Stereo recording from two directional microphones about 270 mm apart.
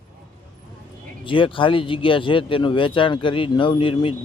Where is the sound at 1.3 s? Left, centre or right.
Centre.